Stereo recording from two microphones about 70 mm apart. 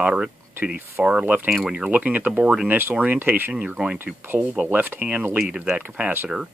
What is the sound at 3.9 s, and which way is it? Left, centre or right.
Speech, right.